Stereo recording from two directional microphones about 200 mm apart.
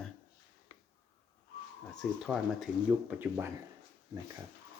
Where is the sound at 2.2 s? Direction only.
Centre (ahead or behind).